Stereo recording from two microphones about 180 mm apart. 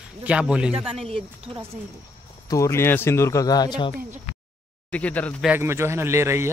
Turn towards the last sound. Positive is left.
turn(degrees=-15)  # may be behind; listen again after turning